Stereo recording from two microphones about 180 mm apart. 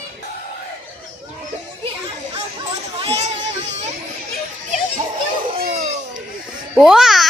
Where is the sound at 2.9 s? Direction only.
40° right (ahead or behind).